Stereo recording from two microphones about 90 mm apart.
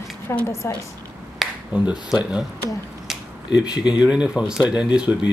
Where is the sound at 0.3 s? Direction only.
30° left (ahead or behind).